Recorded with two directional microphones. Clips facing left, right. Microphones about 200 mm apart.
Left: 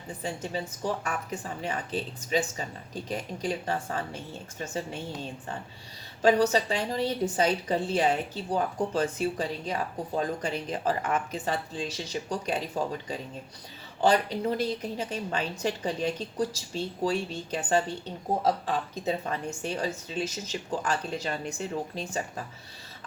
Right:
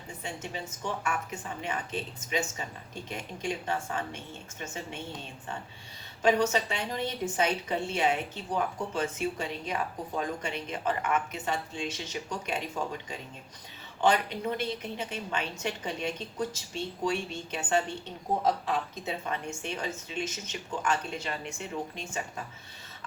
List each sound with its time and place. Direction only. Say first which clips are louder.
0.2 s a woman's voice: left 5 dB; 35° left (ahead or behind)
6.2 s a woman's voice: left 3 dB; 35° left (ahead or behind)
14.0 s a woman's voice: left 3 dB; 35° left (ahead or behind)
18.6 s a woman's voice: left 3 dB; 35° left (ahead or behind)